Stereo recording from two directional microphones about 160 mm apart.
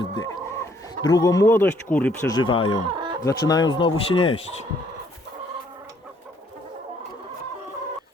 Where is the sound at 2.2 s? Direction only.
30° left (ahead or behind).